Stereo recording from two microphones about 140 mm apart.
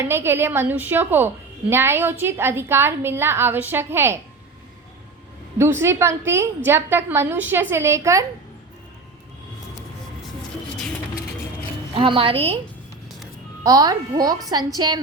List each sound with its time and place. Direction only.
0.0 s a woman's voice: 15° right (ahead or behind)
5.5 s a woman's voice: 20° right (ahead or behind)
10.8 s music: 5° left (ahead or behind)
11.9 s a woman's voice: 40° right (ahead or behind)
13.7 s a woman's voice: 25° right (ahead or behind)